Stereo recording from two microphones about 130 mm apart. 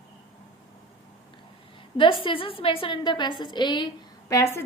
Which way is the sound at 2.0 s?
40° left (ahead or behind).